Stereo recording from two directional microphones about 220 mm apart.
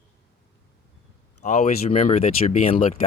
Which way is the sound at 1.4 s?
30° left (ahead or behind).